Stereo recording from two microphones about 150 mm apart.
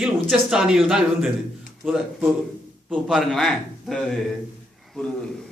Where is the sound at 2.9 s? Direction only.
Centre (ahead or behind).